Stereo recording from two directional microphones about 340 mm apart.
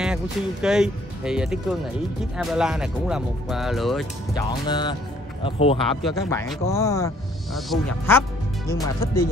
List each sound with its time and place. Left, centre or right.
0.0 s speech: centre
4.3 s speech: centre
6.0 s speech: centre